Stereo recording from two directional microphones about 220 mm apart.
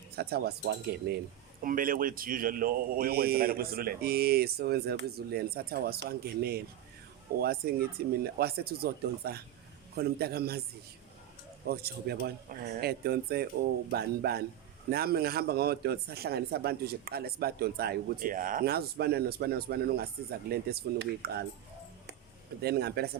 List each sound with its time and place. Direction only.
0.2 s speech: 45° right (ahead or behind)
11.6 s speech: 45° right (ahead or behind)
22.6 s speech: 45° right (ahead or behind)